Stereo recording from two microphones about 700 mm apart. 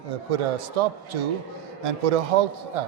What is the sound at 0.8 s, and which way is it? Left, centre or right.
Speech, right.